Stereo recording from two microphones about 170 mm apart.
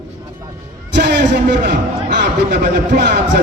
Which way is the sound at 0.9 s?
85° right.